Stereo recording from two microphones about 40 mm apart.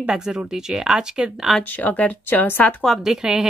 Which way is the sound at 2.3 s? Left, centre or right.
Left.